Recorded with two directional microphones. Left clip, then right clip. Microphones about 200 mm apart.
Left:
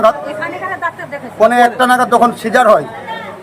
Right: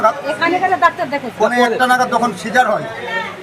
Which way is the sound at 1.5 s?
25° left (ahead or behind).